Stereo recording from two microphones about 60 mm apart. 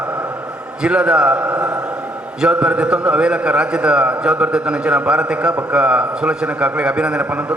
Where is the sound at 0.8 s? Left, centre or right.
Centre.